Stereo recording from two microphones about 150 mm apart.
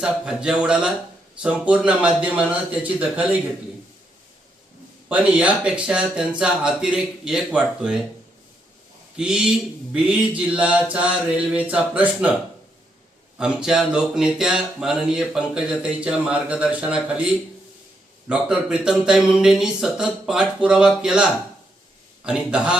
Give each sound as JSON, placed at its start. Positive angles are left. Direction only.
{"t": 0.0, "sound": "speech", "side_deg": -5}
{"t": 5.0, "sound": "speech", "side_deg": -10}
{"t": 9.1, "sound": "speech", "side_deg": -5}
{"t": 13.4, "sound": "speech", "side_deg": -5}